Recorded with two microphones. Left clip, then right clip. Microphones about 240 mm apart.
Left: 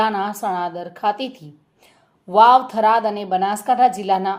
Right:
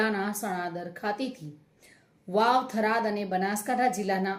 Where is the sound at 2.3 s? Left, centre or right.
Left.